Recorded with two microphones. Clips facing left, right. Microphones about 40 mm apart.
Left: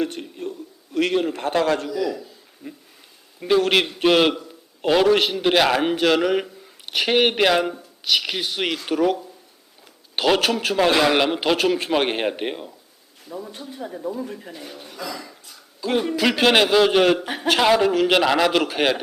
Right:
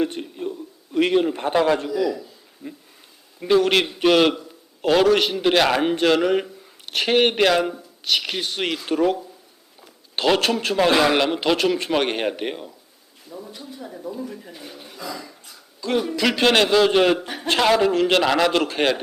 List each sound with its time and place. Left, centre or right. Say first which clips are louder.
0.0 s a man's voice: right 2 dB; centre
13.2 s speech: left 4 dB; left
13.7 s speech: left 4 dB; left
14.3 s speech: left 1 dB; left
14.9 s a sound: left 1 dB; left
15.8 s a man's voice: left 1 dB; centre